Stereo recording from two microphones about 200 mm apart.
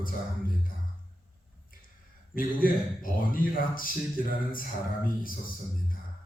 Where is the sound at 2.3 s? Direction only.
45° left (ahead or behind).